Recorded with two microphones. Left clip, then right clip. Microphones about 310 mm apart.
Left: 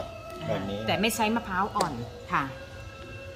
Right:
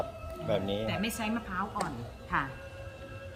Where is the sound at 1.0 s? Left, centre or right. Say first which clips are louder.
Left 8 dB; centre.